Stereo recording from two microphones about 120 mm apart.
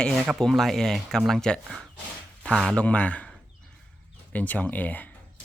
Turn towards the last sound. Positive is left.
turn(degrees=15)  # may be behind; listen again after turning